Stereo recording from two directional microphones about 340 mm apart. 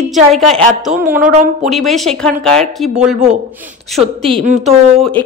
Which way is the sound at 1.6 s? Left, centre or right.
Centre.